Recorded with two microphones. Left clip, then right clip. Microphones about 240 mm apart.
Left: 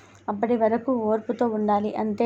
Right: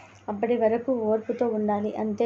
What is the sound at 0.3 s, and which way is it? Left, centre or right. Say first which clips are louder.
A woman's voice: left 1 dB; left.